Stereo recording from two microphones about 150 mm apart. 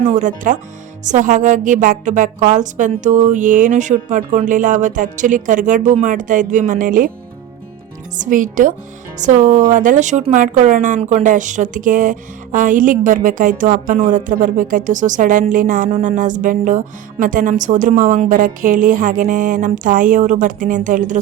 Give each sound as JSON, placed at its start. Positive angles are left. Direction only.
{"t": 0.0, "sound": "speech", "side_deg": -55}
{"t": 8.1, "sound": "speech", "side_deg": -60}